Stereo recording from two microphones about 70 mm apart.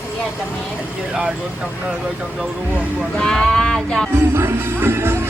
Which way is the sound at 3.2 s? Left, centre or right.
Centre.